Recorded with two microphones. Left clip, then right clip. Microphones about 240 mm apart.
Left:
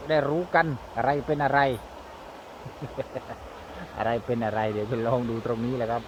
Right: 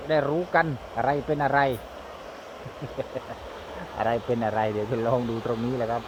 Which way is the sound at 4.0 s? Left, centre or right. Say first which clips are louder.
Right 2 dB; centre.